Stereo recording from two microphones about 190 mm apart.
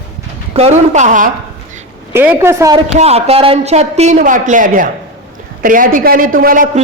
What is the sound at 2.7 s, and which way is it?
Speech, 30° right (ahead or behind).